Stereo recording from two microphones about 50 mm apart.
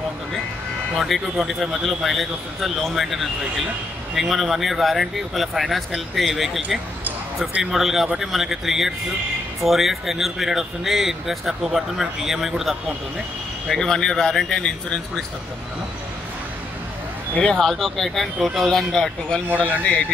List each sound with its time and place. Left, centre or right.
0.9 s a man's voice: centre
13.7 s speech: centre
17.6 s a man's voice: centre
19.2 s speech: left